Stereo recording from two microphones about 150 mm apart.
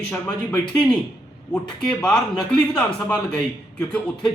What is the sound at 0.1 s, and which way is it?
Speech, 15° left (ahead or behind).